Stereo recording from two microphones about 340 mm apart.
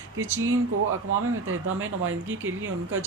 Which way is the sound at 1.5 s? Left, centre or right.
Right.